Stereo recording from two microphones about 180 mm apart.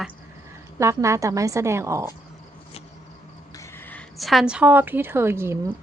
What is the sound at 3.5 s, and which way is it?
A woman's voice, 10° left (ahead or behind).